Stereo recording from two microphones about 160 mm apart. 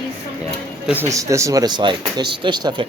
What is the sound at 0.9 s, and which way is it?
Speech, 15° right (ahead or behind).